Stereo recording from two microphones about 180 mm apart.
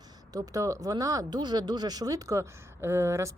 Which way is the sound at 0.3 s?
20° right (ahead or behind).